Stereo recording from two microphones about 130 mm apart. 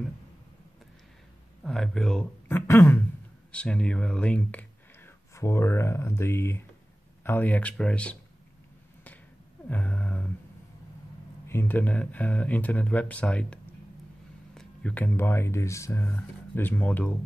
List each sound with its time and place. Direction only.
1.6 s speech: 5° left (ahead or behind)
2.4 s speech: 15° left (ahead or behind)
9.7 s a sound: 10° left (ahead or behind)
11.4 s speech: 15° left (ahead or behind)
14.5 s a sound: 5° left (ahead or behind)
15.0 s speech: 20° left (ahead or behind)